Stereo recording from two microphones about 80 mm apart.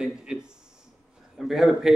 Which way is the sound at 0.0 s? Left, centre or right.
Centre.